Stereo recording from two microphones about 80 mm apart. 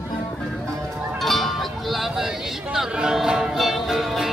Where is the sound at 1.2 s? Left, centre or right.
Centre.